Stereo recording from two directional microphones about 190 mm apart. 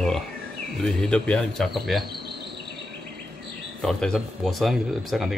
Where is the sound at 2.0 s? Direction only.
55° right (ahead or behind).